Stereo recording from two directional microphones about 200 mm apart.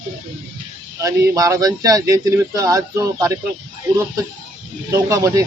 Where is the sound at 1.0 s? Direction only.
15° right (ahead or behind).